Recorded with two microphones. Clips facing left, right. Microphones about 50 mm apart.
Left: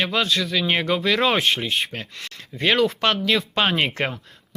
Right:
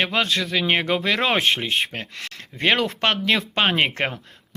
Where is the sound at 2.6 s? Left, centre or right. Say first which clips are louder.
Right 1 dB; right.